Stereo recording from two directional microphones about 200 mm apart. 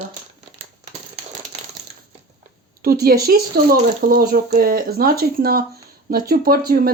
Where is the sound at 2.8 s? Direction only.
50° right (ahead or behind).